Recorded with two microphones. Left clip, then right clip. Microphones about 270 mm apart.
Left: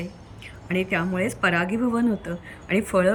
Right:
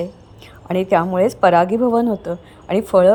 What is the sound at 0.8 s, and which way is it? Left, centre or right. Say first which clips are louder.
Speech: right 13 dB; right.